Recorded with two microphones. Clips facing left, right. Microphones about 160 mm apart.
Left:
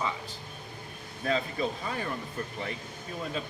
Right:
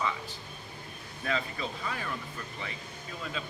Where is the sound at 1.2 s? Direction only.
30° left (ahead or behind).